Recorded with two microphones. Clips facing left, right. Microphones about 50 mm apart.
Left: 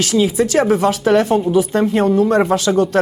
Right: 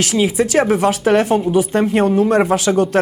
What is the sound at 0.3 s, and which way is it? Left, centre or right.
Speech, centre.